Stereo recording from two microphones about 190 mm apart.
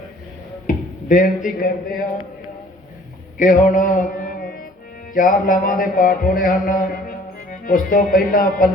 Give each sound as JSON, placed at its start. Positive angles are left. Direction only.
{"t": 0.7, "sound": "speech", "side_deg": 45}
{"t": 3.3, "sound": "music", "side_deg": 45}
{"t": 5.1, "sound": "a sound", "side_deg": 45}